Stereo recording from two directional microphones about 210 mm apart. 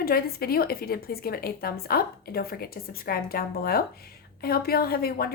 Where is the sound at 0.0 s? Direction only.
45° left (ahead or behind).